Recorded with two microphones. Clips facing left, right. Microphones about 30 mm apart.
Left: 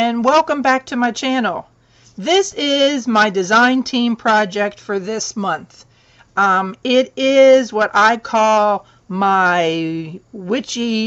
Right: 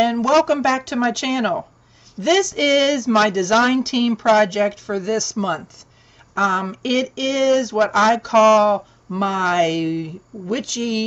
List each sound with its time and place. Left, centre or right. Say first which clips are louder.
0.0 s speech: left 2 dB; centre